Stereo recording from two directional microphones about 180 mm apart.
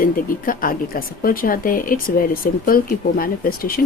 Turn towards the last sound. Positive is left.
turn(degrees=55)  # may be behind; listen again after turning